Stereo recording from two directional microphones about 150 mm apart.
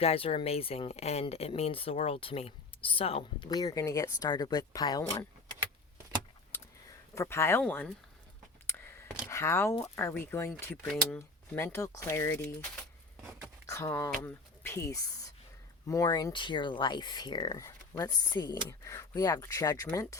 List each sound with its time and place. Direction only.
0.0 s speech: 40° left (ahead or behind)
3.5 s speech: 25° left (ahead or behind)
6.5 s a sound: 15° left (ahead or behind)
7.1 s speech: 20° left (ahead or behind)
8.6 s whispering: 15° left (ahead or behind)
9.3 s speech: 20° left (ahead or behind)
10.8 s speech: centre (ahead or behind)
11.5 s speech: 15° left (ahead or behind)
13.7 s speech: 20° left (ahead or behind)